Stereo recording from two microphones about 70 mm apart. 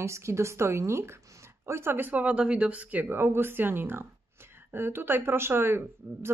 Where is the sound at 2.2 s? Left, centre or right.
Centre.